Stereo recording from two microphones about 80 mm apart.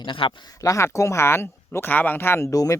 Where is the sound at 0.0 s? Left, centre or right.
Left.